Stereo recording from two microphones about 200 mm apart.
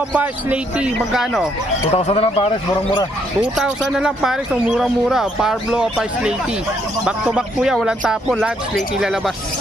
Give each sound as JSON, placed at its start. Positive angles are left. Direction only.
{"t": 0.1, "sound": "speech", "side_deg": -5}
{"t": 1.9, "sound": "speech", "side_deg": 30}
{"t": 3.5, "sound": "speech", "side_deg": -5}